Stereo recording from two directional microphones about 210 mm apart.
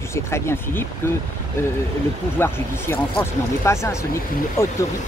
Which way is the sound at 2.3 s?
10° left (ahead or behind).